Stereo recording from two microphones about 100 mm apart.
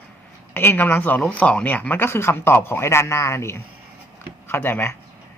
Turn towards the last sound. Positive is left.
turn(degrees=20)  # may be behind; listen again after turning